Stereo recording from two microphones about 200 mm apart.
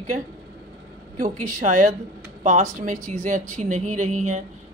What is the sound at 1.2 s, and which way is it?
Speech, 35° right (ahead or behind).